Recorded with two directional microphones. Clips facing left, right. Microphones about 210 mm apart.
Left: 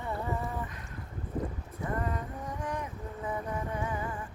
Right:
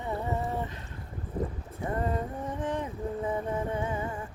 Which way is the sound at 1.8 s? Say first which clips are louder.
Right 4 dB; 30° right (ahead or behind).